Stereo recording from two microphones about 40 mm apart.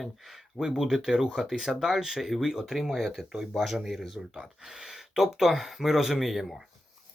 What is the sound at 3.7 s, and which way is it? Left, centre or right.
Speech, centre.